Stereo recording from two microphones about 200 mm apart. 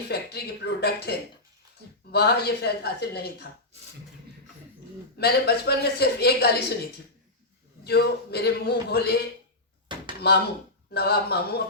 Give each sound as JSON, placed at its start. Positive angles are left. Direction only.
{"t": 0.1, "sound": "a woman's voice", "side_deg": 50}
{"t": 2.1, "sound": "a woman's voice", "side_deg": 55}
{"t": 5.1, "sound": "a woman's voice", "side_deg": 55}
{"t": 7.9, "sound": "a woman's voice", "side_deg": 55}
{"t": 10.2, "sound": "a woman's voice", "side_deg": 50}